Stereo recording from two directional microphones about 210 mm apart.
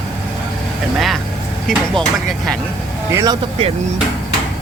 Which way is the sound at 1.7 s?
Centre (ahead or behind).